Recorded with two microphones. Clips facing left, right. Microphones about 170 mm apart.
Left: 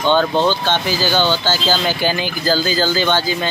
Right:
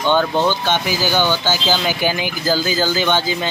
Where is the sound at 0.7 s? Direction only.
15° right (ahead or behind).